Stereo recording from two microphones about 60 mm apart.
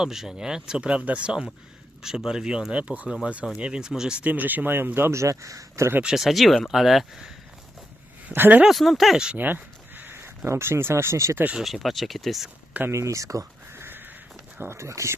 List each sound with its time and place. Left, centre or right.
0.0 s speech: centre
4.2 s speech: right
5.1 s speech: right
6.1 s speech: centre
8.3 s speech: right
8.6 s speech: centre
9.1 s speech: centre
9.4 s speech: right
11.6 s speech: centre
12.9 s speech: right
13.7 s a sound: right
14.7 s speech: right